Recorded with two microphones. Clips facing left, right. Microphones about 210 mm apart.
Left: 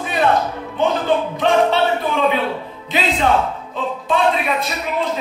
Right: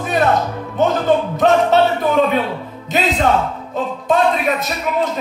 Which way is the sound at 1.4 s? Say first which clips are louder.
Right 3 dB; 45° right (ahead or behind).